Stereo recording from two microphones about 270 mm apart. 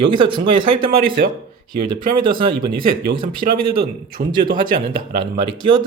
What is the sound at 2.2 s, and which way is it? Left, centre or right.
Speech, centre.